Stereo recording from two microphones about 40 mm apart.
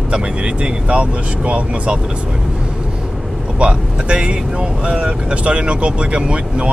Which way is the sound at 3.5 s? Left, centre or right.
Right.